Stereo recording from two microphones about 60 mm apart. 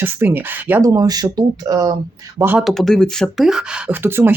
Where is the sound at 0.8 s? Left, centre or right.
Right.